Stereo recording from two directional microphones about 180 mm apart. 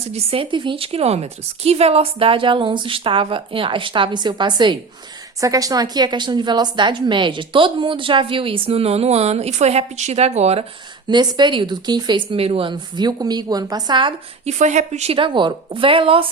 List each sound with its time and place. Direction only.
0.0 s a woman's voice: 35° right (ahead or behind)
11.1 s a woman's voice: 25° right (ahead or behind)
14.5 s a woman's voice: 40° right (ahead or behind)